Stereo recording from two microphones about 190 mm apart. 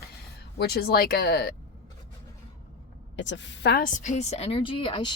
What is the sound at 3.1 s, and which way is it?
A woman's voice, 70° left (ahead or behind).